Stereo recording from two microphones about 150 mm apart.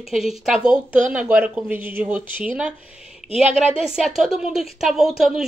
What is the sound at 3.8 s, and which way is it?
Speech, 5° right (ahead or behind).